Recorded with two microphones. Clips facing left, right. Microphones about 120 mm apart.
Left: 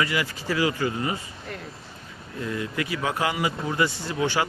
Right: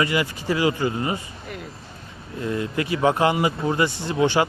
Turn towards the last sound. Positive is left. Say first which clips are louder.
# right 5 dB
turn(degrees=-25)  # may be behind; listen again after turning